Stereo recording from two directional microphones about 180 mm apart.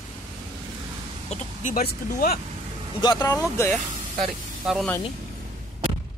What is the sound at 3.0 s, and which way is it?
Speech, 20° left (ahead or behind).